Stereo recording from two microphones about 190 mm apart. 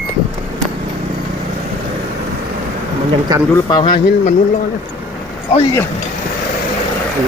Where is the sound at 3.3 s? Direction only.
20° right (ahead or behind).